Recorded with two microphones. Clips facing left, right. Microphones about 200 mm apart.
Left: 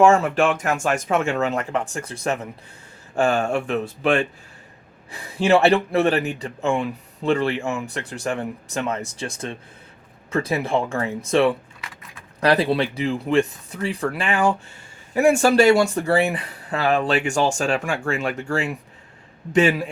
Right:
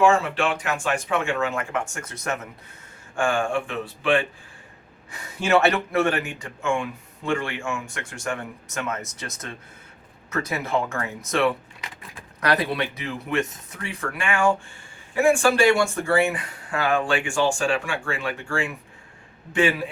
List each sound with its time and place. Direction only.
0.0 s speech: 45° left (ahead or behind)
5.1 s speech: 30° left (ahead or behind)